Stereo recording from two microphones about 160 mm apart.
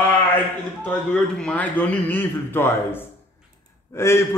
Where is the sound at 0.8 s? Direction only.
5° left (ahead or behind).